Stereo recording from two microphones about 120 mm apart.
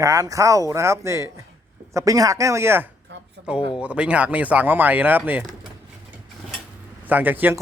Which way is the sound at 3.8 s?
10° right (ahead or behind).